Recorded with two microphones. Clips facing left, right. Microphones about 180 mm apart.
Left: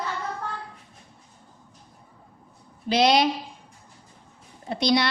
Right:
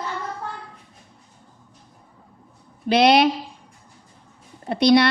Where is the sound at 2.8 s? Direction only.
60° right (ahead or behind).